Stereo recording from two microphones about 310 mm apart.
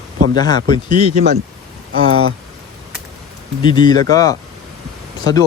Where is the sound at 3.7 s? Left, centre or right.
Centre.